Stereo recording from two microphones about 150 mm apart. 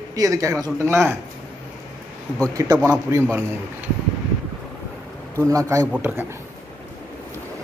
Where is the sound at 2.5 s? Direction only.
25° right (ahead or behind).